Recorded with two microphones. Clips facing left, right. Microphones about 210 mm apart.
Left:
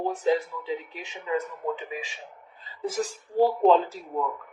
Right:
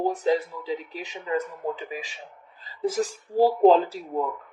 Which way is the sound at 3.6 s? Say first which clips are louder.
Right 3 dB; 35° right (ahead or behind).